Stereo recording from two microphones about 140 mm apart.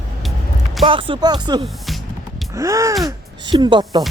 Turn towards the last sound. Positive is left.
turn(degrees=-30)  # may be behind; listen again after turning